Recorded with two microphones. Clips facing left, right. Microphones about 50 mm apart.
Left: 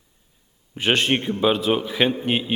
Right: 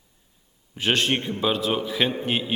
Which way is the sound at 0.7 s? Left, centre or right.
Centre.